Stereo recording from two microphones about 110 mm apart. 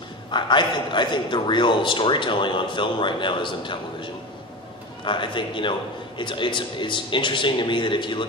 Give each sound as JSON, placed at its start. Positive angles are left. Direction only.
{"t": 0.3, "sound": "a man's voice", "side_deg": 45}